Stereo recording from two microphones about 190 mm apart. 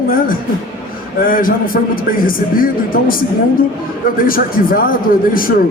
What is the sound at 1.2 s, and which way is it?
A man's voice, 45° left (ahead or behind).